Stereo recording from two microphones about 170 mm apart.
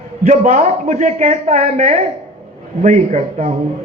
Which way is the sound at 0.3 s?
45° right (ahead or behind).